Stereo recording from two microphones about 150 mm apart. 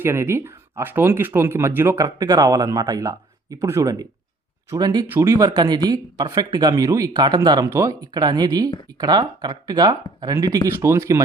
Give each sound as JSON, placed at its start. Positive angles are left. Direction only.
{"t": 0.0, "sound": "speech", "side_deg": -15}